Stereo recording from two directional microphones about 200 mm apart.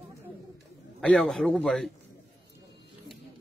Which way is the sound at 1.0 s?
5° left (ahead or behind).